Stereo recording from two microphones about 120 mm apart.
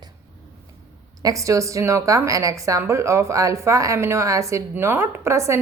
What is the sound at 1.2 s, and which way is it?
A woman's voice, 25° right (ahead or behind).